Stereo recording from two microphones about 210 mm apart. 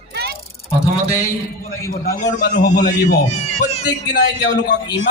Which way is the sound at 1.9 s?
50° left (ahead or behind).